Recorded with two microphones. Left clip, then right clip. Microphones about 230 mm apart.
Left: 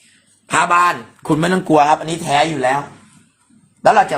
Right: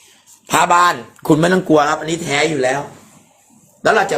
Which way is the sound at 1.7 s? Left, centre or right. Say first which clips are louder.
Left 1 dB; left.